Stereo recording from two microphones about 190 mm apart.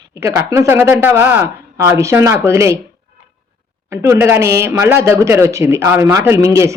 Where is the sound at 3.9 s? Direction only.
15° right (ahead or behind).